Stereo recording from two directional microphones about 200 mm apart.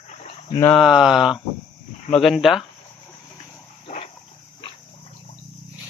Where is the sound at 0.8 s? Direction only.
Centre (ahead or behind).